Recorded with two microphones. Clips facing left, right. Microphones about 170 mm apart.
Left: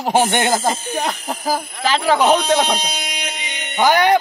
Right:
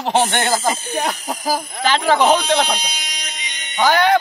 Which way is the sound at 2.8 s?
50° left (ahead or behind).